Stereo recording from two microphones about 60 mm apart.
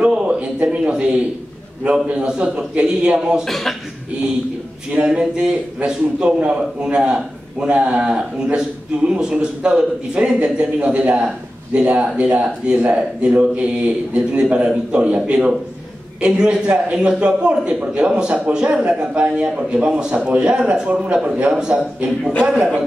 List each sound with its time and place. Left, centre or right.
0.0 s a man's voice: centre
3.4 s speech: centre
4.9 s speech: centre